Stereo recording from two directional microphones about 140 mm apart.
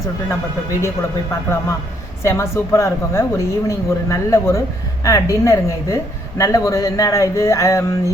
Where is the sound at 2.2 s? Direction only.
20° left (ahead or behind).